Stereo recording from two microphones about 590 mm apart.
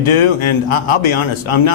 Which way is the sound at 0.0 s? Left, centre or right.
Left.